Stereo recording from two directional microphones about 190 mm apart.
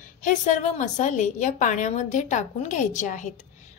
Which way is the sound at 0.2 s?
40° left (ahead or behind).